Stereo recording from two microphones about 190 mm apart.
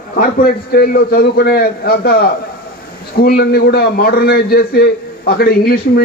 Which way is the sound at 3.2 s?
55° left (ahead or behind).